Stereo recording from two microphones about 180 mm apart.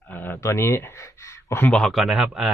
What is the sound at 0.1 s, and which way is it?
Speech, 10° left (ahead or behind).